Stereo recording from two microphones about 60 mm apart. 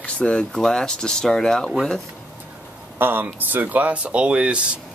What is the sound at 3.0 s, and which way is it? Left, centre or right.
Speech, right.